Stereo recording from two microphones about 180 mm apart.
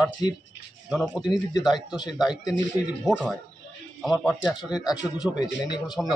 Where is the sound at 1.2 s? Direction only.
25° left (ahead or behind).